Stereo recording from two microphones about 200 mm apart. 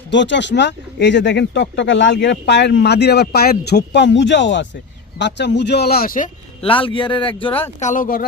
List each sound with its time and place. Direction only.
0.1 s speech: 60° left (ahead or behind); by 6.3 s 45° left (ahead or behind)
6.6 s speech: 25° left (ahead or behind)
7.8 s speech: 40° left (ahead or behind)